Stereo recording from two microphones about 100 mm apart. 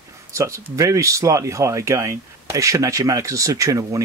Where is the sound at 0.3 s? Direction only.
30° right (ahead or behind).